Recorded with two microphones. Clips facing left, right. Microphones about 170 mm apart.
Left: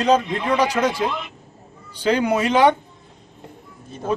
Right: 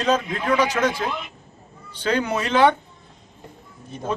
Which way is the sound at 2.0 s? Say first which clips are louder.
Left 4 dB; 10° left (ahead or behind).